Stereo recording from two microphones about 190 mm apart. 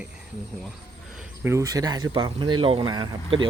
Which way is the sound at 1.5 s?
20° right (ahead or behind).